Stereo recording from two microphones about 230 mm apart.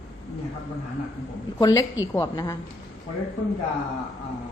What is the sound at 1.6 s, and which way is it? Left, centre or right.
Speech, centre.